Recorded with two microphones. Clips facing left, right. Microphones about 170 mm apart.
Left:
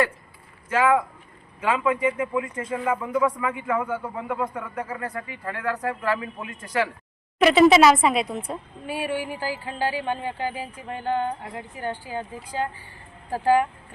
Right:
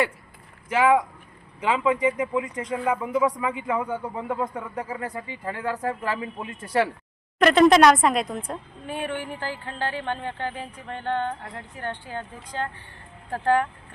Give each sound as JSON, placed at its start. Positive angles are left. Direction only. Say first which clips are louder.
{"t": 0.7, "sound": "speech", "louder": "right 1 dB", "side_deg": -15}
{"t": 7.3, "sound": "a woman's voice", "louder": "even", "side_deg": 5}